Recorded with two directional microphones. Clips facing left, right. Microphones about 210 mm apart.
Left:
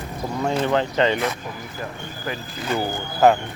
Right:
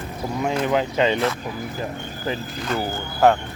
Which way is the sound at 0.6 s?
10° right (ahead or behind).